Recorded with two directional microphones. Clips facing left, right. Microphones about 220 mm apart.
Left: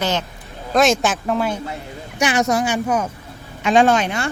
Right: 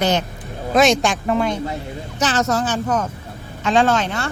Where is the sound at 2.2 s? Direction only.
15° left (ahead or behind).